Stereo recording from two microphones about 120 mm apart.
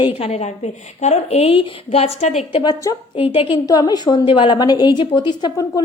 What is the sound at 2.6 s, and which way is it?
Speech, 30° left (ahead or behind).